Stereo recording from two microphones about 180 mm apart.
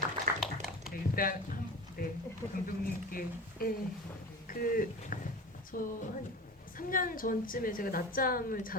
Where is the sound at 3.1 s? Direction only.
50° left (ahead or behind).